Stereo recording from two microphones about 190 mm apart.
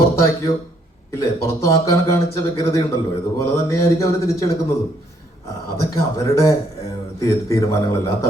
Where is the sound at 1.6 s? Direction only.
15° left (ahead or behind).